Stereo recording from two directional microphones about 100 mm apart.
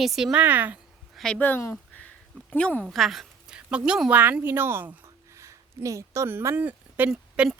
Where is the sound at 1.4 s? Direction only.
20° left (ahead or behind).